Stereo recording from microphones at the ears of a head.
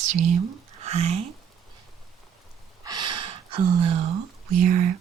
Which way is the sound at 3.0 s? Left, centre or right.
Right.